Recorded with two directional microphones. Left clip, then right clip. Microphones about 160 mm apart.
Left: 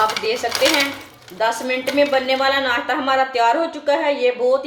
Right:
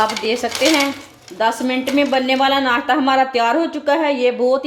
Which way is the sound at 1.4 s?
50° right (ahead or behind).